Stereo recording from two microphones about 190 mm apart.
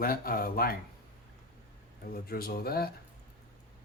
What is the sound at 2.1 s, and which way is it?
Speech, 50° left (ahead or behind).